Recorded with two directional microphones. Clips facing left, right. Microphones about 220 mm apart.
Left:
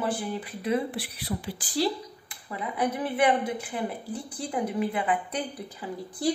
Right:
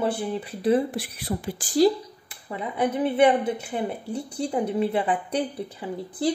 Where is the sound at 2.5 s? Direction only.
25° right (ahead or behind).